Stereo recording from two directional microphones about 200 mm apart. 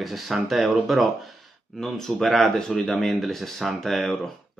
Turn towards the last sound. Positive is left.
turn(degrees=0)  # may be behind; listen again after turning